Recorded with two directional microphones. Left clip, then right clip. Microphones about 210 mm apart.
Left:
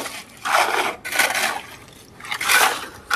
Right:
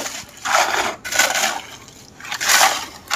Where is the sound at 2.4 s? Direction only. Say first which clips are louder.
Right 2 dB; 20° right (ahead or behind).